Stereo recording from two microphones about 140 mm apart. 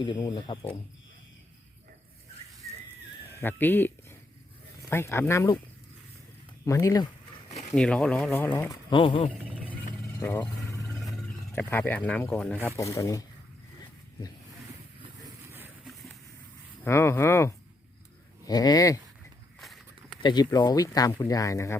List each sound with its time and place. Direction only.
0.0 s speech: 30° left (ahead or behind)
3.4 s speech: 15° left (ahead or behind)
6.7 s speech: 25° left (ahead or behind)
7.8 s speech: 5° left (ahead or behind)
8.5 s speech: 25° left (ahead or behind)
10.2 s speech: 20° left (ahead or behind)
11.5 s speech: 15° left (ahead or behind)
12.6 s speech: 20° left (ahead or behind)
16.8 s speech: 15° left (ahead or behind)
19.5 s walk: centre (ahead or behind)
20.2 s speech: 30° left (ahead or behind)